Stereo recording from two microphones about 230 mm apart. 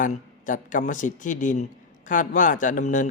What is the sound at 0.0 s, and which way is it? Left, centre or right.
A man's voice, left.